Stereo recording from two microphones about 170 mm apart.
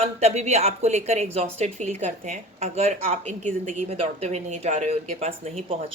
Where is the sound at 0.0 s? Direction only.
40° right (ahead or behind).